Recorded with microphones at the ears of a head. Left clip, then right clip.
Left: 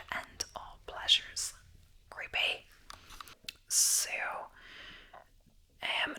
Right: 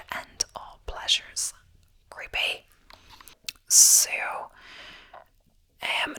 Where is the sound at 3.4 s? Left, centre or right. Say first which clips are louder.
Right 12 dB; right.